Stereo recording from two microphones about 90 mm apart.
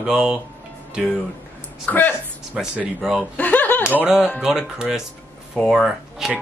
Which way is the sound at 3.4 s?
15° left (ahead or behind).